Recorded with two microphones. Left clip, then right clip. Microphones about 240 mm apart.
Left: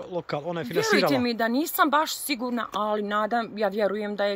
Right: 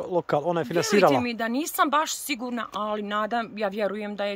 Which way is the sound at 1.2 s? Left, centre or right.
Centre.